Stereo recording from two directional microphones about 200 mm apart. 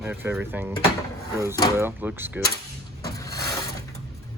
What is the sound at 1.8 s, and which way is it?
Speech, 10° right (ahead or behind).